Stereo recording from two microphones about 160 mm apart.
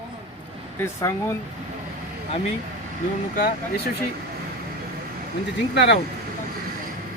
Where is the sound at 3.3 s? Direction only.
65° left (ahead or behind).